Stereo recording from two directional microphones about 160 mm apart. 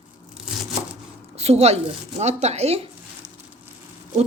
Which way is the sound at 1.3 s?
40° right (ahead or behind).